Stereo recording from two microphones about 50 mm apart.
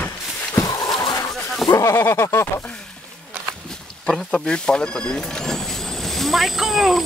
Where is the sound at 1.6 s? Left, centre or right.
Left.